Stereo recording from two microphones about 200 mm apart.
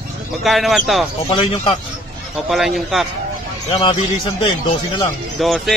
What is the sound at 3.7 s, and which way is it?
Speech, 25° left (ahead or behind).